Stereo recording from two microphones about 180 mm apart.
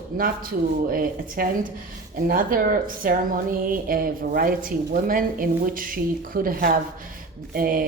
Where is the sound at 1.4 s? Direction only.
55° right (ahead or behind).